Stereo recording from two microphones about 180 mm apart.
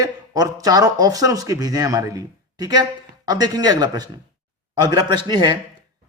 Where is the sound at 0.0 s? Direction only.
20° right (ahead or behind).